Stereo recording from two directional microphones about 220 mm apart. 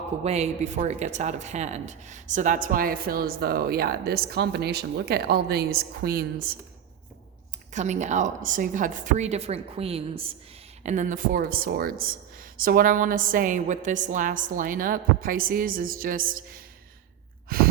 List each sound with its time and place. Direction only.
0.3 s speech: 30° right (ahead or behind)
7.7 s speech: 35° right (ahead or behind)